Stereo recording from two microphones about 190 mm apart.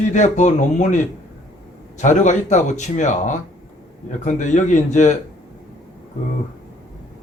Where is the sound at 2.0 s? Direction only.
40° left (ahead or behind).